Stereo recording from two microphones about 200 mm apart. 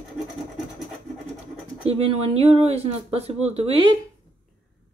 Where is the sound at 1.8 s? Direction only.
30° right (ahead or behind).